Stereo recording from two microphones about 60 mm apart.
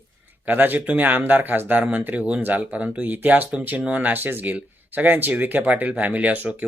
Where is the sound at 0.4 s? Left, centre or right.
Right.